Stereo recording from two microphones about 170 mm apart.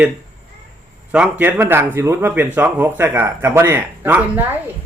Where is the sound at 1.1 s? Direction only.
10° right (ahead or behind).